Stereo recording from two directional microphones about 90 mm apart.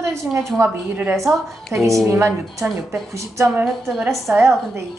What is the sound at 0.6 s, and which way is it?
Speech, 20° right (ahead or behind).